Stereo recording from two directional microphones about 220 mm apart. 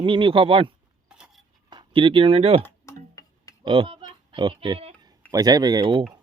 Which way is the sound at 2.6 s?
10° left (ahead or behind).